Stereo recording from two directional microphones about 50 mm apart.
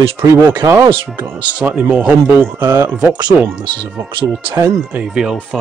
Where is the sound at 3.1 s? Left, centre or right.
Right.